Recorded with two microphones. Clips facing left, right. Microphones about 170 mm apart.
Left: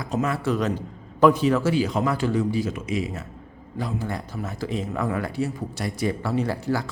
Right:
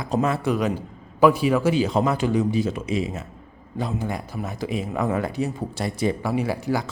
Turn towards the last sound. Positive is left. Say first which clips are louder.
# right 1 dB
turn(degrees=-15)  # may be behind; listen again after turning